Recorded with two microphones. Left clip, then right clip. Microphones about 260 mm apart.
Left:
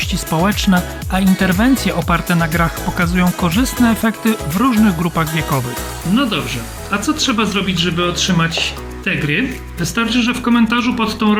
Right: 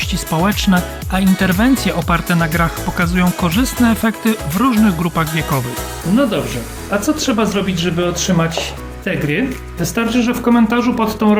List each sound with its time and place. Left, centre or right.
0.0 s speech: centre
6.9 s speech: centre